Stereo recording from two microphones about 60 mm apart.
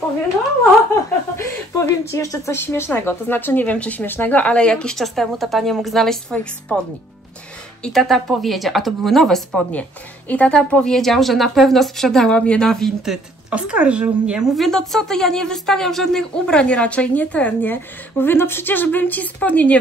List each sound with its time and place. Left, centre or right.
1.3 s a woman's voice: left
3.7 s speech: left
4.0 s speech: left; by 4.9 s centre
4.9 s a woman's voice: centre
6.7 s speech: centre
7.9 s a woman's voice: centre
9.7 s a woman's voice: left; by 12.3 s centre
12.3 s speech: centre
12.6 s speech: centre
13.5 s speech: centre
14.4 s speech: centre; by 17.7 s left
18.2 s a woman's voice: left